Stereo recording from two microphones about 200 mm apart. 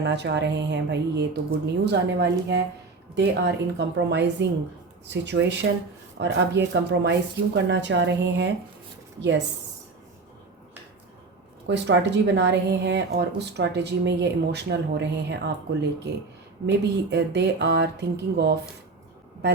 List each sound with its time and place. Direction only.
0.0 s a woman's voice: 60° right (ahead or behind)
11.6 s a woman's voice: 60° right (ahead or behind)
16.6 s a woman's voice: 60° right (ahead or behind)